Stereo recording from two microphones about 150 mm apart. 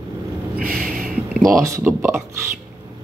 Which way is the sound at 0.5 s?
70° right (ahead or behind).